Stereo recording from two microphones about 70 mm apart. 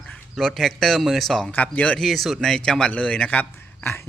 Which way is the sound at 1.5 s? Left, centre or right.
Left.